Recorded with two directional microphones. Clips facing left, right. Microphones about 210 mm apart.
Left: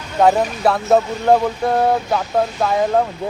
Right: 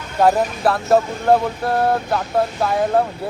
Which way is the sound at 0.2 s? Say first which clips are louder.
Left 1 dB; 5° right (ahead or behind).